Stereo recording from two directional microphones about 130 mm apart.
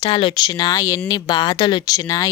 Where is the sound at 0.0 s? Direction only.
40° left (ahead or behind).